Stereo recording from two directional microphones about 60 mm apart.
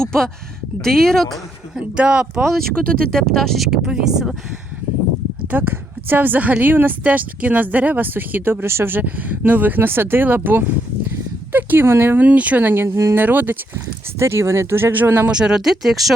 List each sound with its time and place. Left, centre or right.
0.0 s speech: centre
1.7 s speech: centre
2.5 s speech: centre
3.7 s speech: centre
5.5 s a woman's voice: right
8.6 s a woman's voice: right
12.9 s speech: right
13.1 s a woman's voice: right
14.2 s speech: right
15.3 s speech: centre